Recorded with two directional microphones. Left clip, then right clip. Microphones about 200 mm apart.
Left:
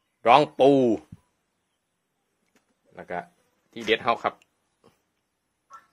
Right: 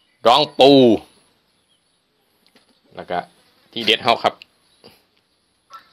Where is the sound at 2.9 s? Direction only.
15° right (ahead or behind).